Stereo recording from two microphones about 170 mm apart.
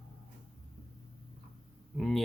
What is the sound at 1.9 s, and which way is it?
Speech, centre (ahead or behind).